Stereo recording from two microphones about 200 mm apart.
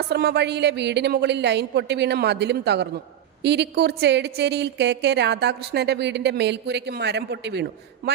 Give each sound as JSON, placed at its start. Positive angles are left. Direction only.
{"t": 0.0, "sound": "a woman's voice", "side_deg": -55}